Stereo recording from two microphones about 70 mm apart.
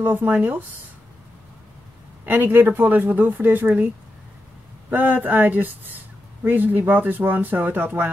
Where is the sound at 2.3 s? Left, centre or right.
Right.